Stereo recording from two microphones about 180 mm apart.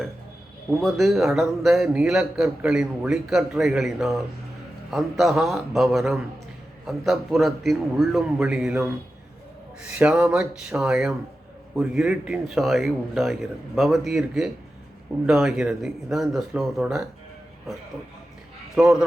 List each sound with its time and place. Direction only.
0.8 s a man's voice: centre (ahead or behind)
9.9 s a man's voice: 5° right (ahead or behind)
18.8 s a man's voice: 5° right (ahead or behind)